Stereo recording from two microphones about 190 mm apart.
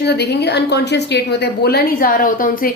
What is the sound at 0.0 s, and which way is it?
A woman's voice, 60° left (ahead or behind).